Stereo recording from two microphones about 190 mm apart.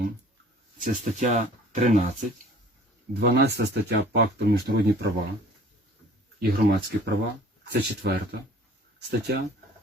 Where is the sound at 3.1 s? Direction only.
60° right (ahead or behind).